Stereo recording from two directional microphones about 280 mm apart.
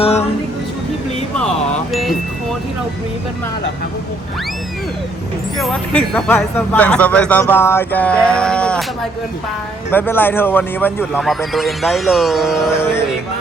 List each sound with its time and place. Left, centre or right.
0.0 s music: left
1.9 s chime: centre
5.5 s speech: centre
9.9 s speech: centre
12.7 s music: centre